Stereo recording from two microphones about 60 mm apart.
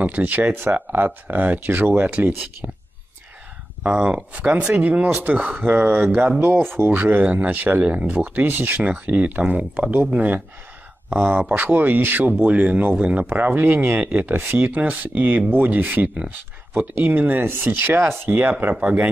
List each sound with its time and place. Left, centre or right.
0.0 s speech: right
3.8 s speech: centre
6.4 s speech: right
7.0 s speech: right